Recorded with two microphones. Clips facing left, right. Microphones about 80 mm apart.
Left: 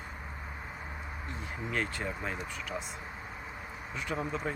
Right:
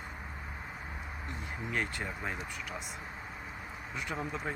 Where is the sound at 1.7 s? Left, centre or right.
Centre.